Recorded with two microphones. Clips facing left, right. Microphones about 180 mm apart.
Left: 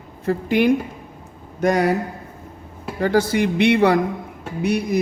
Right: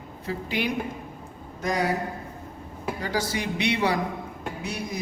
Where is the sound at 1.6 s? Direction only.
65° left (ahead or behind).